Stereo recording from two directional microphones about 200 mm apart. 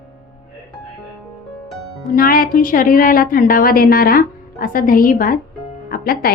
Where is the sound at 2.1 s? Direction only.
45° left (ahead or behind).